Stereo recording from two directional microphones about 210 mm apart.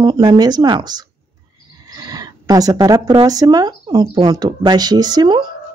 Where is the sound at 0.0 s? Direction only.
20° right (ahead or behind).